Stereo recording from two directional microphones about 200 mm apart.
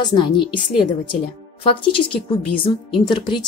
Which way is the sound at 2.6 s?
25° left (ahead or behind).